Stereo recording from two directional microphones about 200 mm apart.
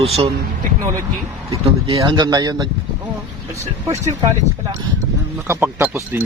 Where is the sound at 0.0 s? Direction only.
30° right (ahead or behind).